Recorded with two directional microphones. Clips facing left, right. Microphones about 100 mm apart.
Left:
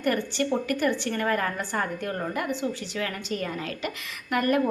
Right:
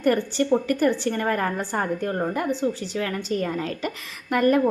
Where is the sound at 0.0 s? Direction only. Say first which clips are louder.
Right 4 dB; 35° right (ahead or behind).